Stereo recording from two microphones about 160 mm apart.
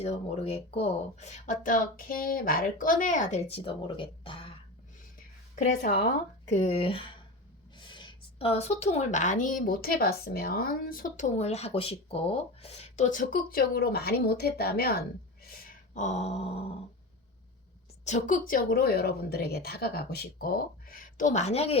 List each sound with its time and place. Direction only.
0.0 s speech: 40° left (ahead or behind)
5.6 s a woman's voice: 70° left (ahead or behind)
6.5 s a sound: 40° left (ahead or behind)
7.8 s speech: 30° left (ahead or behind); by 15.0 s 75° left (ahead or behind)
16.0 s a sound: 45° left (ahead or behind)
18.0 s a woman's voice: 50° left (ahead or behind)